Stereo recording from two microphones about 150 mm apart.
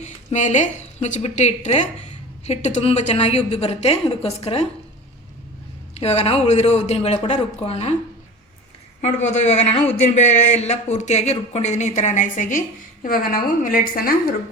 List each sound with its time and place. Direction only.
0.0 s a woman's voice: 50° left (ahead or behind)
6.0 s speech: 45° left (ahead or behind)
9.0 s speech: 50° left (ahead or behind); by 14.3 s 75° left (ahead or behind)